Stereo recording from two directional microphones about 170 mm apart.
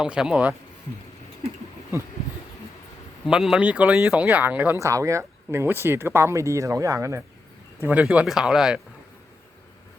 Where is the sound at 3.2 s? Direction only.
5° right (ahead or behind).